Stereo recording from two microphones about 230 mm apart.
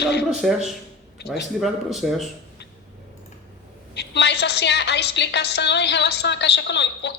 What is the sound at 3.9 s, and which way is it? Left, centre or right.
A woman's voice, left.